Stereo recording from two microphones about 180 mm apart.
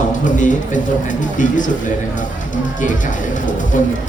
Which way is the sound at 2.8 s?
45° left (ahead or behind).